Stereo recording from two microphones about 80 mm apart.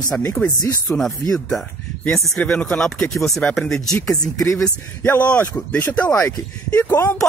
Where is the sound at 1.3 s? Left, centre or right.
Centre.